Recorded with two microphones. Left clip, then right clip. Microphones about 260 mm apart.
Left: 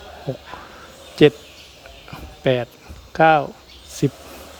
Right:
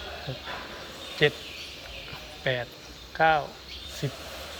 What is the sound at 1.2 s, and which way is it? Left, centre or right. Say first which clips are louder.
Speech: left 10 dB; left.